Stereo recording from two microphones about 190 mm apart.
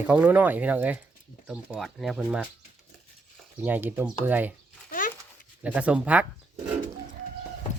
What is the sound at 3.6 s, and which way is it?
Speech, 10° right (ahead or behind).